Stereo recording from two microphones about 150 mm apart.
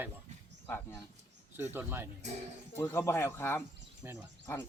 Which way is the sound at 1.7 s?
15° right (ahead or behind).